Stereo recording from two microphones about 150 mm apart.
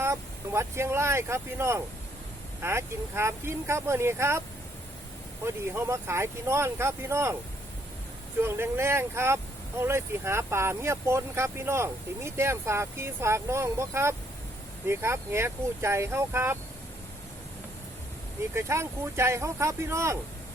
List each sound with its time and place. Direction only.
0.0 s speech: 20° right (ahead or behind)
5.5 s speech: 15° right (ahead or behind)
8.4 s speech: 15° right (ahead or behind)
18.5 s speech: 15° right (ahead or behind)